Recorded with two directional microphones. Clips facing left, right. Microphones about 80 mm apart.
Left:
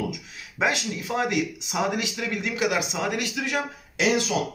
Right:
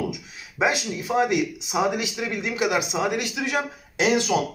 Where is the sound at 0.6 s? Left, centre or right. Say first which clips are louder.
Right 2 dB; centre.